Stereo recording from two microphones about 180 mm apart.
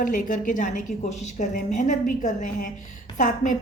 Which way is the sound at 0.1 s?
45° left (ahead or behind).